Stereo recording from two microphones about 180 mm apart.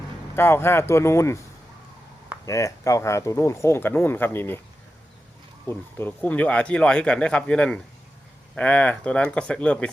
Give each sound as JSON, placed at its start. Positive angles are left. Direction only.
{"t": 0.3, "sound": "speech", "side_deg": 15}
{"t": 2.5, "sound": "speech", "side_deg": 15}
{"t": 5.6, "sound": "speech", "side_deg": 10}